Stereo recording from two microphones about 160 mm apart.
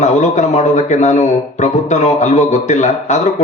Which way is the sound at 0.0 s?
50° left (ahead or behind).